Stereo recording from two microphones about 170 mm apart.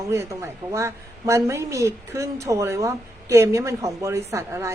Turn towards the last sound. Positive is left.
turn(degrees=-15)  # may be behind; listen again after turning